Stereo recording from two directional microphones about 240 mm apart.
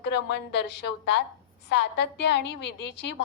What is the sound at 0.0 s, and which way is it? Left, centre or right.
A woman's voice, left.